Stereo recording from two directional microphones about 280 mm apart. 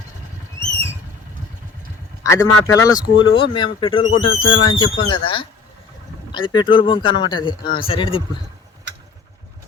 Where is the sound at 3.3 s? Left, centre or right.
Centre.